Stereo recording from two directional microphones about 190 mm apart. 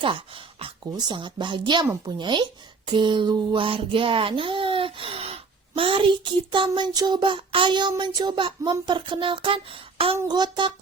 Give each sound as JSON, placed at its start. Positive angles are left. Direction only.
{"t": 0.0, "sound": "speech", "side_deg": -25}